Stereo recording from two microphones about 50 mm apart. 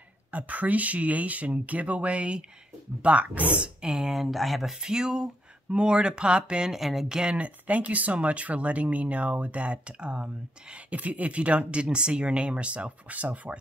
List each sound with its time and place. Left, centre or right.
0.3 s speech: right
3.5 s speech: centre
4.7 s speech: centre
6.7 s speech: centre
7.2 s speech: right